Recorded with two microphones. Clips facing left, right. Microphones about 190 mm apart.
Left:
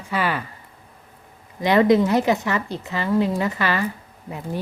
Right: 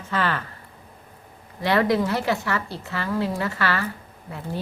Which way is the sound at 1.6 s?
20° left (ahead or behind).